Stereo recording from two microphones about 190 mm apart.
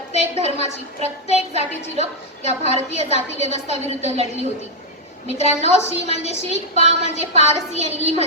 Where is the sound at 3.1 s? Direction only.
35° right (ahead or behind).